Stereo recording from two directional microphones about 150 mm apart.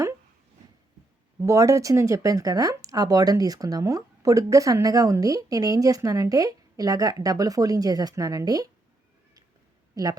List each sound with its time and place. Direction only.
1.4 s speech: 20° right (ahead or behind)
9.9 s speech: 25° right (ahead or behind)